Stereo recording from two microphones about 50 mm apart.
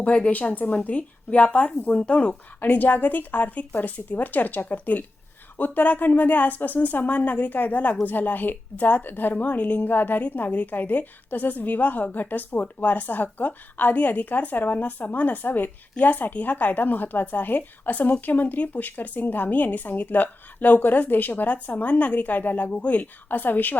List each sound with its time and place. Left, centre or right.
0.0 s speech: left
2.6 s a woman's voice: left